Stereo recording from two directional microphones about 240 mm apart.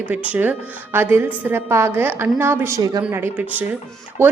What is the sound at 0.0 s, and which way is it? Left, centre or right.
Speech, centre.